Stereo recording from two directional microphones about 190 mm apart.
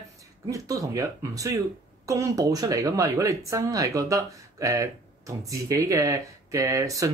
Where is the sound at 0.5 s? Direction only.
15° right (ahead or behind).